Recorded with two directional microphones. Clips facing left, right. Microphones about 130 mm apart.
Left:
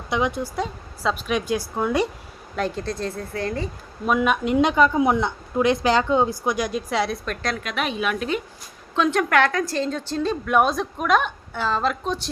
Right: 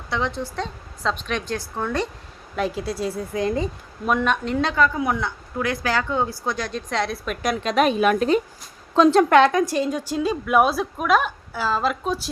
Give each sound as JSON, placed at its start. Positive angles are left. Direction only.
{"t": 0.1, "sound": "speech", "side_deg": 15}
{"t": 2.6, "sound": "a woman's voice", "side_deg": -5}
{"t": 4.0, "sound": "speech", "side_deg": 5}
{"t": 7.6, "sound": "a woman's voice", "side_deg": -40}